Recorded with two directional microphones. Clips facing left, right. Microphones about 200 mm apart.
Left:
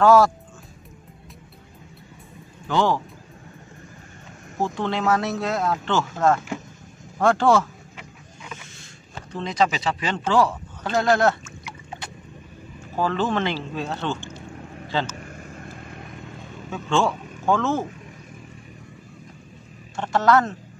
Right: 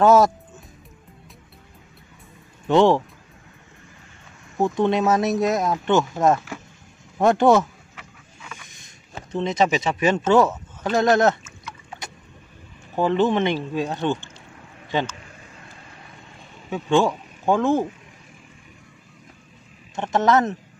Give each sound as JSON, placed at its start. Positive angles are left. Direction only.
{"t": 0.0, "sound": "speech", "side_deg": -20}
{"t": 2.7, "sound": "speech", "side_deg": -25}
{"t": 4.7, "sound": "speech", "side_deg": -20}
{"t": 7.9, "sound": "a sound", "side_deg": 20}
{"t": 8.7, "sound": "speech", "side_deg": -20}
{"t": 12.9, "sound": "speech", "side_deg": -20}
{"t": 15.1, "sound": "vehicle", "side_deg": 50}
{"t": 16.7, "sound": "speech", "side_deg": -15}
{"t": 20.0, "sound": "a woman's voice", "side_deg": -20}